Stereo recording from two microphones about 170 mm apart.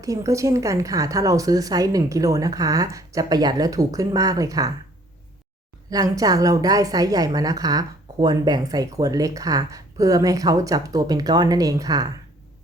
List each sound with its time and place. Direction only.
0.0 s a woman's voice: 20° right (ahead or behind)
5.9 s a woman's voice: 20° right (ahead or behind)